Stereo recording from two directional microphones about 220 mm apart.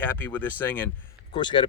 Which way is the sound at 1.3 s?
20° left (ahead or behind).